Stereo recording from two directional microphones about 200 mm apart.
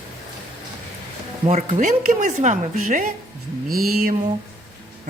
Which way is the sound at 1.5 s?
40° right (ahead or behind).